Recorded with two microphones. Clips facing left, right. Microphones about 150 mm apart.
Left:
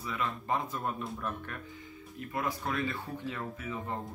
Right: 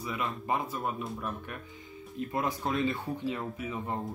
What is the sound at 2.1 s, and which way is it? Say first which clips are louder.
Speech: right 3 dB; 25° right (ahead or behind).